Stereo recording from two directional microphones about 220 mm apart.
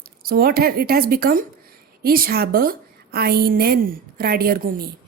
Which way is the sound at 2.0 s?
40° right (ahead or behind).